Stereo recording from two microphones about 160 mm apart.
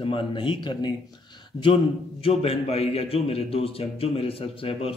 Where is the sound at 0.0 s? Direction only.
35° left (ahead or behind).